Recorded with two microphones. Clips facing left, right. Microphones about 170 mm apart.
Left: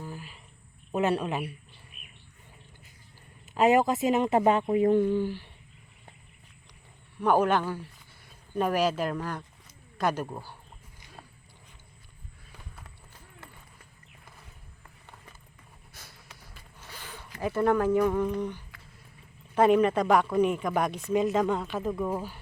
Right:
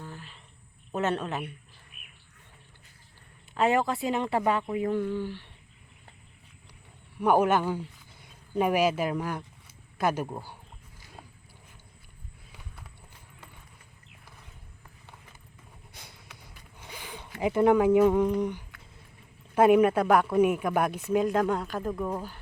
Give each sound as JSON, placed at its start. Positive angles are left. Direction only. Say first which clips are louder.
{"t": 0.0, "sound": "insect", "louder": "left 3 dB", "side_deg": 10}
{"t": 0.9, "sound": "speech", "louder": "left 2 dB", "side_deg": 10}
{"t": 1.9, "sound": "bird", "louder": "left 2 dB", "side_deg": -5}
{"t": 3.5, "sound": "speech", "louder": "left 3 dB", "side_deg": 15}
{"t": 7.2, "sound": "speech", "louder": "right 1 dB", "side_deg": -10}
{"t": 12.5, "sound": "skateboard", "louder": "left 1 dB", "side_deg": -5}
{"t": 15.9, "sound": "snort", "louder": "even", "side_deg": -15}
{"t": 17.4, "sound": "speech", "louder": "right 3 dB", "side_deg": -15}